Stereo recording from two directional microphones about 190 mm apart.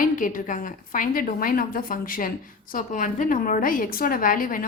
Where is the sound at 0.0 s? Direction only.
45° left (ahead or behind).